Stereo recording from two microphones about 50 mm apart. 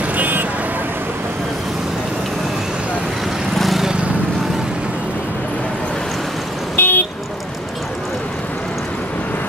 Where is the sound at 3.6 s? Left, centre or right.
Centre.